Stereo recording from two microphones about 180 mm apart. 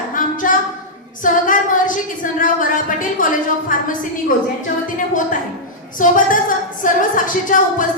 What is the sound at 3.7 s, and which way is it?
Speech, 45° left (ahead or behind).